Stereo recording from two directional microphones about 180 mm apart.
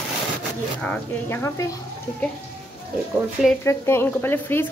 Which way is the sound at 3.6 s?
15° left (ahead or behind).